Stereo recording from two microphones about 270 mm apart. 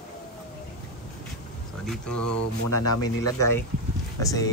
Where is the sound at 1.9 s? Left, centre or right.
Centre.